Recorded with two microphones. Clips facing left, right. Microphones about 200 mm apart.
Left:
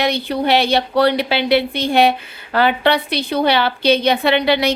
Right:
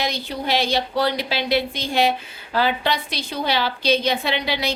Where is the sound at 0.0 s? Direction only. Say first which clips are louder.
Left 7 dB; 65° left (ahead or behind).